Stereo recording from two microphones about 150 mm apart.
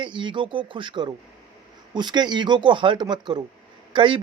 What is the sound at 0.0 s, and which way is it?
Speech, 30° right (ahead or behind).